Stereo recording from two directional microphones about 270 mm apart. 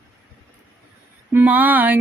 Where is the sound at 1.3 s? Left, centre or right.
Centre.